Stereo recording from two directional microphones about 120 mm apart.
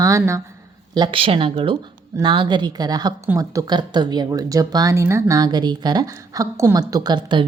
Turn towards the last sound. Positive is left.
turn(degrees=-40)  # may be behind; listen again after turning